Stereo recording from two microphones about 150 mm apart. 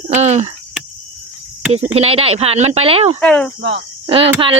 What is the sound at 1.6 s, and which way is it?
Speech, 10° right (ahead or behind).